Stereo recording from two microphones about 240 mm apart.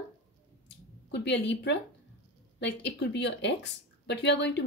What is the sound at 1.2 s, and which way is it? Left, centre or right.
A woman's voice, left.